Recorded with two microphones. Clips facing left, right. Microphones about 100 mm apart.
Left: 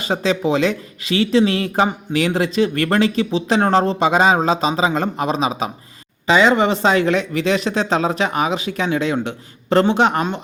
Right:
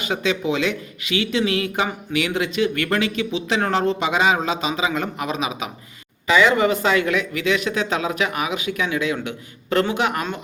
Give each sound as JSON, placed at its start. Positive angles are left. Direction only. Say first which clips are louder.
{"t": 0.0, "sound": "speech", "louder": "left 4 dB", "side_deg": 35}